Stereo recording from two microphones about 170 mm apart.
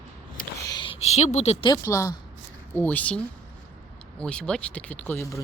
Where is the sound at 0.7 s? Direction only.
25° left (ahead or behind).